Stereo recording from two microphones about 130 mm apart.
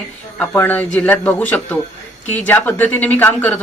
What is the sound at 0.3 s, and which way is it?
Speech, 15° left (ahead or behind).